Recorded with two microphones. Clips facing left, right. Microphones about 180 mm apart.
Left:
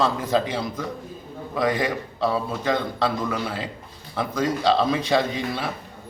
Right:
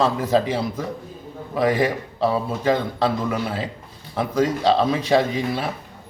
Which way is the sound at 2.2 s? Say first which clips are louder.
Right 3 dB; 30° right (ahead or behind).